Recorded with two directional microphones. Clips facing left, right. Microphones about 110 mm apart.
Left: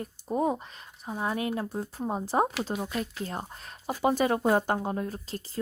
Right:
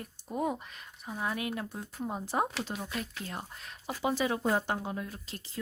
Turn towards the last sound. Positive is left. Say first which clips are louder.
# left 6 dB
turn(degrees=40)  # may be behind; listen again after turning